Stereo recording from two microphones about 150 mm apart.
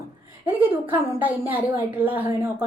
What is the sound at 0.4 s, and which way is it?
A woman's voice, 10° right (ahead or behind).